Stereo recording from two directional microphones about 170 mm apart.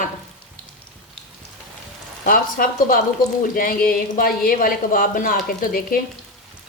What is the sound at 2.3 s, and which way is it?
Speech, 55° left (ahead or behind).